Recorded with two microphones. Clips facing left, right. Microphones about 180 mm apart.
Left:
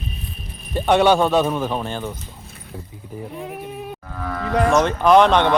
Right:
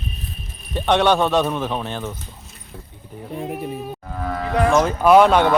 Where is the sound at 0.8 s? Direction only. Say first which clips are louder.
Left 2 dB; 5° left (ahead or behind).